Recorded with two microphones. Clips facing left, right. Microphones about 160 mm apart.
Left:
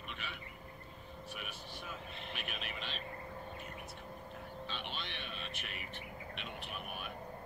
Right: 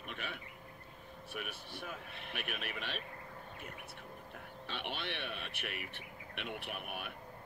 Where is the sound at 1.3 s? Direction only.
55° right (ahead or behind).